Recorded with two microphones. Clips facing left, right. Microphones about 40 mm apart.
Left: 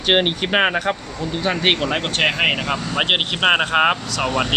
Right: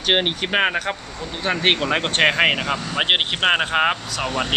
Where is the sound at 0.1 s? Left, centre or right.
Centre.